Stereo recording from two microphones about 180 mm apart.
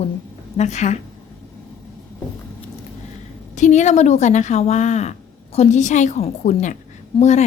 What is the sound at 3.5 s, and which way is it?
A woman's voice, 40° left (ahead or behind).